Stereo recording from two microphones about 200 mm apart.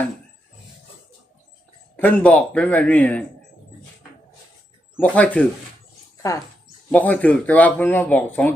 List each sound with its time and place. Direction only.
2.0 s speech: 10° left (ahead or behind)
4.9 s speech: 5° left (ahead or behind)